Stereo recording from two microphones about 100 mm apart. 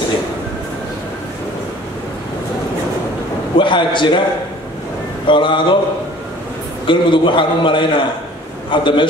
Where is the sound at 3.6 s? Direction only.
55° left (ahead or behind).